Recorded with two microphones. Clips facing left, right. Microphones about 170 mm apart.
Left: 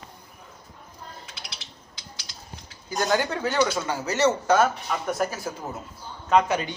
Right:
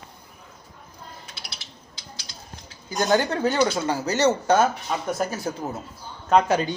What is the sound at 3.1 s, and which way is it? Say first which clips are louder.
Speech: right 4 dB; 30° right (ahead or behind).